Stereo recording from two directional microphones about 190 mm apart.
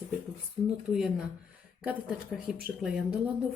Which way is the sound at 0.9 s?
5° right (ahead or behind).